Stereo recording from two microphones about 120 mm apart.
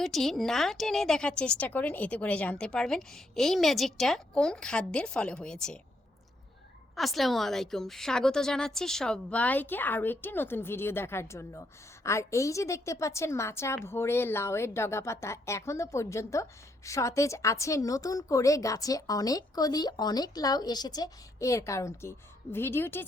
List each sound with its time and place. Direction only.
0.0 s a woman's voice: centre (ahead or behind)
6.9 s a woman's voice: centre (ahead or behind); by 23.0 s 20° left (ahead or behind)